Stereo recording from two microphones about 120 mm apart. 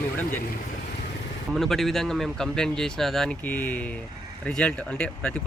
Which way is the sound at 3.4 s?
15° left (ahead or behind).